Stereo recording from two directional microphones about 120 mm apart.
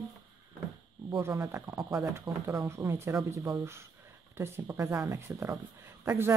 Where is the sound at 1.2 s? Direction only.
25° right (ahead or behind).